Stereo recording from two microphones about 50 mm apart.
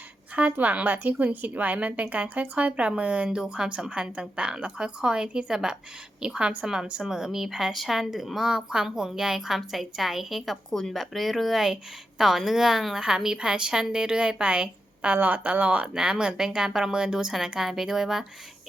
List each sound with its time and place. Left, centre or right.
0.5 s a woman's voice: right
16.0 s a woman's voice: centre